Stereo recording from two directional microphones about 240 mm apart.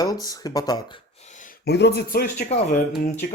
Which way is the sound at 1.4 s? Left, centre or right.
Left.